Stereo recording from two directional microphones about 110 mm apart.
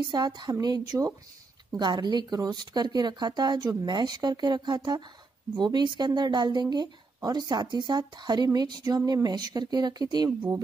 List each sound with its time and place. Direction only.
0.1 s a woman's voice: 40° right (ahead or behind)